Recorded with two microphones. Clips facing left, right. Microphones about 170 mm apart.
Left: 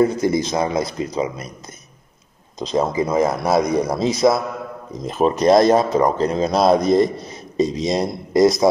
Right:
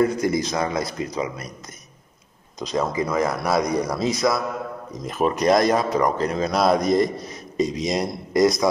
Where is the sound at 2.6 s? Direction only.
25° left (ahead or behind).